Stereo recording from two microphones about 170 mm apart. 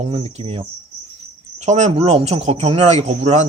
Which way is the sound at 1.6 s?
45° right (ahead or behind).